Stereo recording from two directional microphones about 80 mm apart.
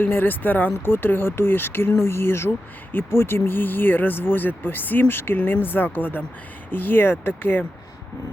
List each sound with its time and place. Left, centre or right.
0.0 s speech: left